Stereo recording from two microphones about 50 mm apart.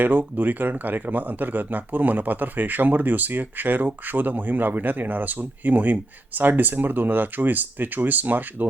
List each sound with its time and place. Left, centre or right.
0.0 s speech: right